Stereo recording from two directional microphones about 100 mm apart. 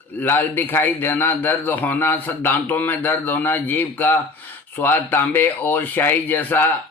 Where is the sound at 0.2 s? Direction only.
20° left (ahead or behind).